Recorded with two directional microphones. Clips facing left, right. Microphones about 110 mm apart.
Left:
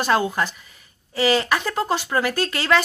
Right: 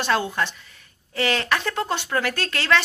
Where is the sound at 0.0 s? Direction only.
10° left (ahead or behind).